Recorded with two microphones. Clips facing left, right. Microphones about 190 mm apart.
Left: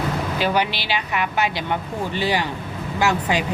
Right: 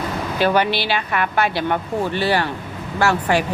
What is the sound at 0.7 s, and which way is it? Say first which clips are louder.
Speech: right 4 dB; 15° left (ahead or behind).